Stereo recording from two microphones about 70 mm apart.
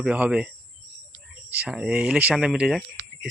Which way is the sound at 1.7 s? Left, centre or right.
Centre.